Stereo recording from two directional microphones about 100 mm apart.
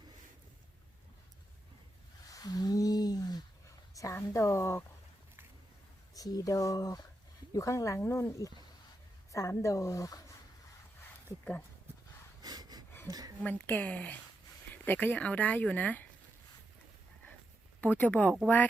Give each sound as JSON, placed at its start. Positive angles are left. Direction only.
{"t": 2.3, "sound": "a sound", "side_deg": 40}
{"t": 3.9, "sound": "a woman's voice", "side_deg": 35}
{"t": 6.1, "sound": "speech", "side_deg": 40}
{"t": 12.4, "sound": "a sound", "side_deg": -45}
{"t": 13.4, "sound": "speech", "side_deg": 15}
{"t": 17.9, "sound": "speech", "side_deg": 15}